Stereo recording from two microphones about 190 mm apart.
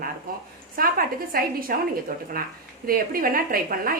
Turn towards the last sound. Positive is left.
turn(degrees=-50)  # may be behind; listen again after turning